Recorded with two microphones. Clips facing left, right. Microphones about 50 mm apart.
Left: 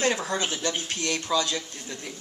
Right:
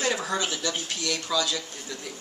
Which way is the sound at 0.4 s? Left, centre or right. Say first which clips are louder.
Left 1 dB; left.